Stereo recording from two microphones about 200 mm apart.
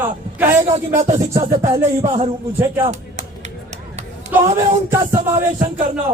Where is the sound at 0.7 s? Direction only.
30° right (ahead or behind).